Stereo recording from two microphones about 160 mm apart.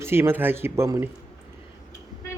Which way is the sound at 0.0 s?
15° right (ahead or behind).